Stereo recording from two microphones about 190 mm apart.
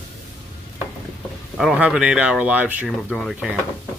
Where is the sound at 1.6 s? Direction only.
Centre (ahead or behind).